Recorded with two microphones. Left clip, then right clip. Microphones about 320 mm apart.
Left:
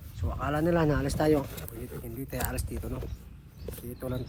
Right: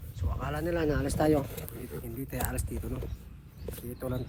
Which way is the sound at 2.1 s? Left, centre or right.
Centre.